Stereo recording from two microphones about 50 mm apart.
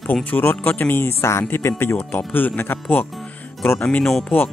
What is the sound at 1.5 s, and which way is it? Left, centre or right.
Speech, left.